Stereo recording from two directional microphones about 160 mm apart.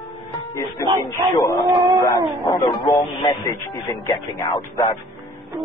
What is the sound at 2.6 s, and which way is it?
A man's voice, 25° left (ahead or behind).